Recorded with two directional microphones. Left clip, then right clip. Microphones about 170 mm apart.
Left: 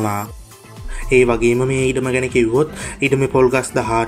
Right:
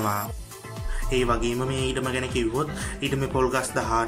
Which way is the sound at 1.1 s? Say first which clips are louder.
Left 11 dB; 25° left (ahead or behind).